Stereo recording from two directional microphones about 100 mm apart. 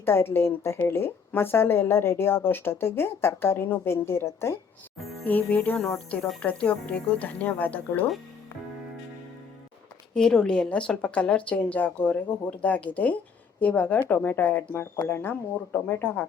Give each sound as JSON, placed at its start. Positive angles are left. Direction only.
{"t": 0.0, "sound": "a woman's voice", "side_deg": 25}
{"t": 10.2, "sound": "a woman's voice", "side_deg": 5}